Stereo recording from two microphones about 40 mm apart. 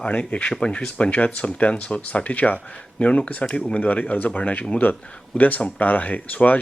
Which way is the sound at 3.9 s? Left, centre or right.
Left.